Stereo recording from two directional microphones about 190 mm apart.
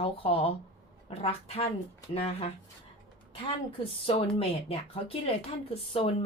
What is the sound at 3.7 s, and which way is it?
A woman's voice, 30° left (ahead or behind).